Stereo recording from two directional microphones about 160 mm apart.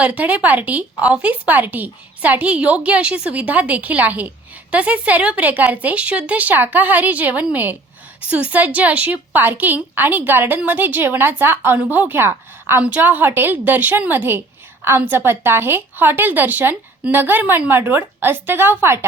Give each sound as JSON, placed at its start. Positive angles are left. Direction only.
{"t": 0.0, "sound": "a woman's voice", "side_deg": -10}